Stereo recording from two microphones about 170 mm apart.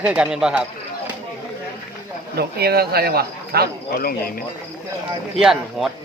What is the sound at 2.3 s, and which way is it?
Speech, 65° right (ahead or behind).